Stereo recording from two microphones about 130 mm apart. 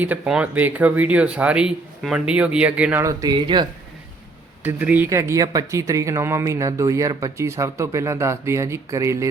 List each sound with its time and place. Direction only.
0.0 s speech: 10° right (ahead or behind)
3.0 s speech: 25° right (ahead or behind)
4.6 s speech: 15° right (ahead or behind)
5.0 s speech: 25° right (ahead or behind)